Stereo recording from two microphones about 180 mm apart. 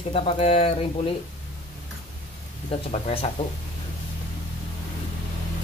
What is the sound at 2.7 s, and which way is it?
Speech, 30° left (ahead or behind).